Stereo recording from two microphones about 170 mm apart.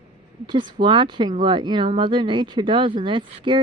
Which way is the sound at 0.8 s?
30° right (ahead or behind).